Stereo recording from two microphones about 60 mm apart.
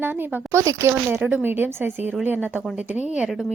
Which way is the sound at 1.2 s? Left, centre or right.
Right.